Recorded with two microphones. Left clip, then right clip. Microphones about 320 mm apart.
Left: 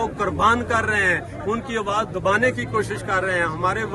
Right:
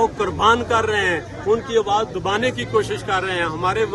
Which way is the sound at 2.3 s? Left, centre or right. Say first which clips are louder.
Left 3 dB; centre.